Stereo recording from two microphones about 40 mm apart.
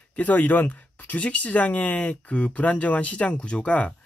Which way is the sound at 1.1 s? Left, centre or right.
Left.